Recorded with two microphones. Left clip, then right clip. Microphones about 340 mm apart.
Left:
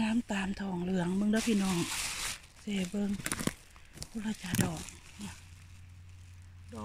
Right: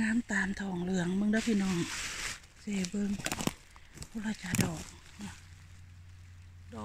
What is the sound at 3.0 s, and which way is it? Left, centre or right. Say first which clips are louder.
Speech: right 1 dB; centre.